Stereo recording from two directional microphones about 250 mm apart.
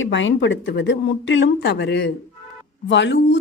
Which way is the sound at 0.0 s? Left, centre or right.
Left.